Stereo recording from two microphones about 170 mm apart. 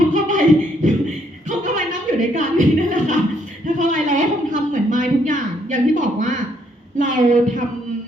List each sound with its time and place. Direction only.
0.1 s beatboxing: 50° right (ahead or behind)
1.5 s a sound: 50° right (ahead or behind)
6.9 s a woman's voice: 50° right (ahead or behind)